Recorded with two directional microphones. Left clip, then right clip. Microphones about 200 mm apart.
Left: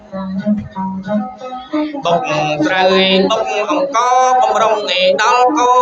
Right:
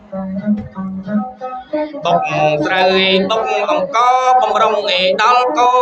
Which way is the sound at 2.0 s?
20° right (ahead or behind).